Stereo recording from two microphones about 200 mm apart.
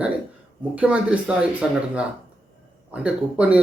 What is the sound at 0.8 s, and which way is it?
A man's voice, 5° right (ahead or behind).